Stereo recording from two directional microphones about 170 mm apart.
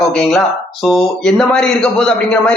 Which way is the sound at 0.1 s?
5° left (ahead or behind).